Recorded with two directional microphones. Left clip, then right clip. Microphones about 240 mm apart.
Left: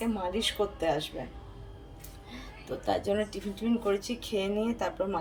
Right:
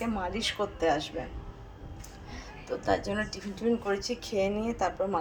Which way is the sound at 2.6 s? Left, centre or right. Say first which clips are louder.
Right 1 dB; centre.